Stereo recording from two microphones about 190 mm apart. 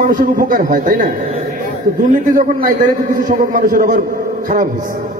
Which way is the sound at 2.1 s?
45° right (ahead or behind).